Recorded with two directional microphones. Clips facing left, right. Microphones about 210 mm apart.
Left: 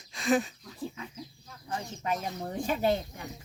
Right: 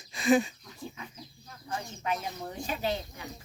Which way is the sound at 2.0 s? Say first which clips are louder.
Left 1 dB; 45° left (ahead or behind).